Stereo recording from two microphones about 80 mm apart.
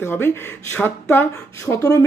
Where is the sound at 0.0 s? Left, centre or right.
Left.